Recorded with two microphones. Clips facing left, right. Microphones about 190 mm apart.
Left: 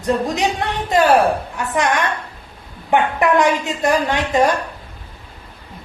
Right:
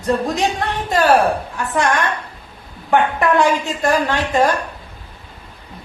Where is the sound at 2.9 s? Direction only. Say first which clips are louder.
Even; 15° left (ahead or behind).